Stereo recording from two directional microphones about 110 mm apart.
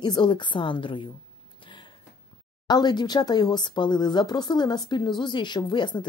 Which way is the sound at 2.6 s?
40° left (ahead or behind).